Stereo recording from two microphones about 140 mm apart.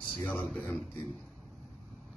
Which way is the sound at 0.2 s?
10° left (ahead or behind).